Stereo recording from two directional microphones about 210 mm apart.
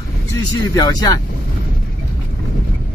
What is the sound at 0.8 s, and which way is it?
Speech, 20° left (ahead or behind).